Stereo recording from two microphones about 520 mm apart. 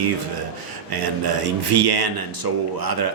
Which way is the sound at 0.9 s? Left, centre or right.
Right.